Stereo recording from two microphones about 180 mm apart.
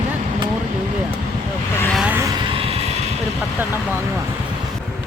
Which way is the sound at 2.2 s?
20° right (ahead or behind).